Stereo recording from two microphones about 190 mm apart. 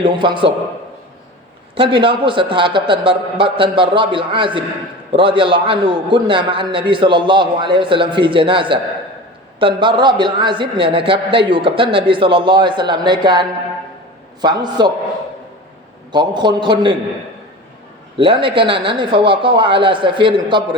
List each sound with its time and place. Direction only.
0.0 s a man's voice: 25° right (ahead or behind)
1.7 s a man's voice: 25° right (ahead or behind)
16.1 s a man's voice: 25° right (ahead or behind)
18.2 s a man's voice: 25° right (ahead or behind)